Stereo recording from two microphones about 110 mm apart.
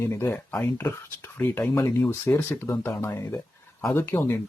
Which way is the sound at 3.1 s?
25° left (ahead or behind).